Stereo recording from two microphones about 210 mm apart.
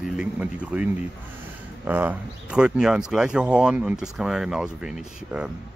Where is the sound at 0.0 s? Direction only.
5° right (ahead or behind).